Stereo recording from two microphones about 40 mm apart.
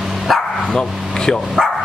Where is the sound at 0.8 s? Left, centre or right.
Centre.